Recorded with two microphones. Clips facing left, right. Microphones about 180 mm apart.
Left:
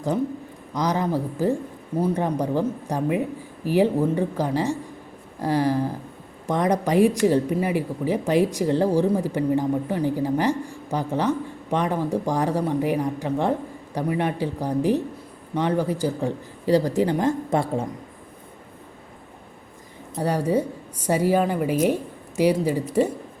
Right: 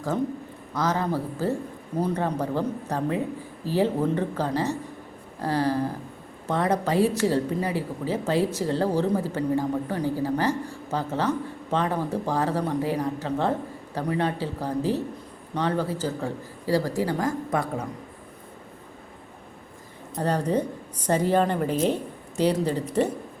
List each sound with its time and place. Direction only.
0.7 s speech: 15° left (ahead or behind)
20.1 s speech: 10° left (ahead or behind)